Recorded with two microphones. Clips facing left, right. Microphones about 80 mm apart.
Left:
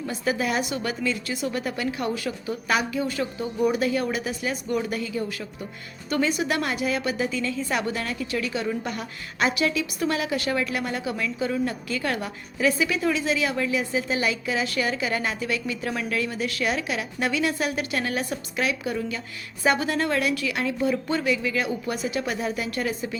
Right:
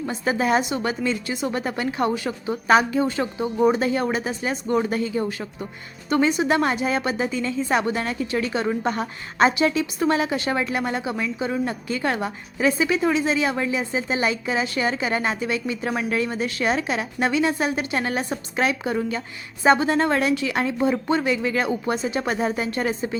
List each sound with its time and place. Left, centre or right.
0.0 s a woman's voice: right